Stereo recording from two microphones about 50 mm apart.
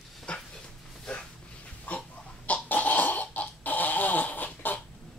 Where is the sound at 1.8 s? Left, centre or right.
Left.